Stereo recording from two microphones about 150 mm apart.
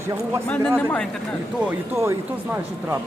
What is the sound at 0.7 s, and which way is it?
Speech, 10° left (ahead or behind).